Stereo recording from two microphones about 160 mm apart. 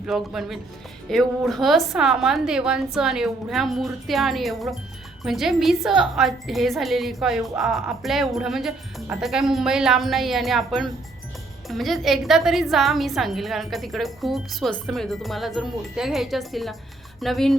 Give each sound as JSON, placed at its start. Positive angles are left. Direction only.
{"t": 0.0, "sound": "speech", "side_deg": 0}